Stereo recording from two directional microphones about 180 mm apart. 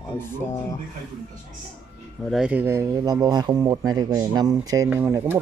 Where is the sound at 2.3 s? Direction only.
5° right (ahead or behind).